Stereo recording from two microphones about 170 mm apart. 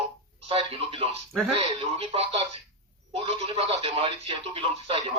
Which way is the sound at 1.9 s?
35° right (ahead or behind).